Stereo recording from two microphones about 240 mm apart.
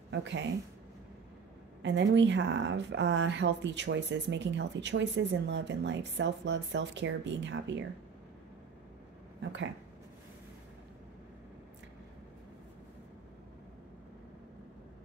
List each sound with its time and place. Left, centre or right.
0.1 s a woman's voice: right
1.8 s a woman's voice: right
9.4 s a woman's voice: right